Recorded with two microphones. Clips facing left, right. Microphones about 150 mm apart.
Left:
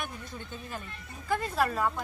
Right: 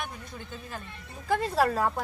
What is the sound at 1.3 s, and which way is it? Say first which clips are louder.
Speech: right 4 dB; 30° right (ahead or behind).